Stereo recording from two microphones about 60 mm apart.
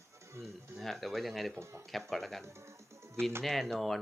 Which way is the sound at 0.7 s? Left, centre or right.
Centre.